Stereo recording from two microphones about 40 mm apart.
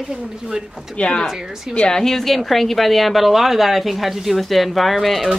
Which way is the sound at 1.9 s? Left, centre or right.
Centre.